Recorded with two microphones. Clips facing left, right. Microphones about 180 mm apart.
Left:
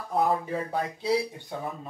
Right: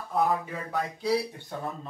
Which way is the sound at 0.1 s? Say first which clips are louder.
Left 1 dB; 30° left (ahead or behind).